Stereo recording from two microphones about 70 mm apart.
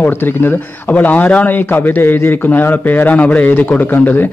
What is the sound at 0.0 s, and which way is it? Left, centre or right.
Speech, left.